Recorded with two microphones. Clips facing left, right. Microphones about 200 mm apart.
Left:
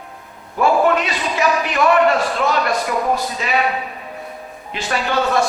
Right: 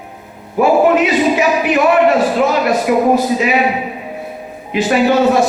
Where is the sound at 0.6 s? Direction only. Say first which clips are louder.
Right 5 dB; 15° right (ahead or behind).